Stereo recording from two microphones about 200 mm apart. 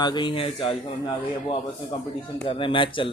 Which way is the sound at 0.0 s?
20° left (ahead or behind).